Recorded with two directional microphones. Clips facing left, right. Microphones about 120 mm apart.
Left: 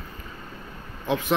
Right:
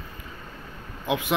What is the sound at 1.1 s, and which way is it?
Speech, 15° right (ahead or behind).